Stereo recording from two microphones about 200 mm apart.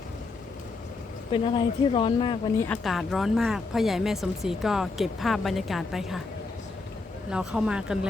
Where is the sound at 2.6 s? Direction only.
5° left (ahead or behind).